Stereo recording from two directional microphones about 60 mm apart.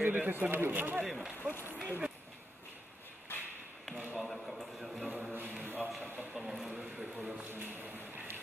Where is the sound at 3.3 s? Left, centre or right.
Left.